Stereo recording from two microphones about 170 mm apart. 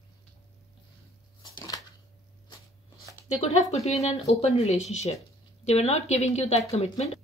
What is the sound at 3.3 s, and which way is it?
Speech, 40° left (ahead or behind).